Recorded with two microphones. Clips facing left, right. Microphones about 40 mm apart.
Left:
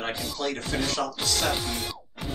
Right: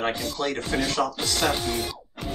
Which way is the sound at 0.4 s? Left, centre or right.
Centre.